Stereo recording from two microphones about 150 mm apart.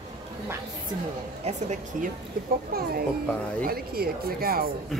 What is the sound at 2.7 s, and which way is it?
Speech, 90° right.